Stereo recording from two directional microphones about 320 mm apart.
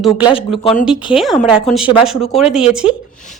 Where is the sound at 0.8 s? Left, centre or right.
Centre.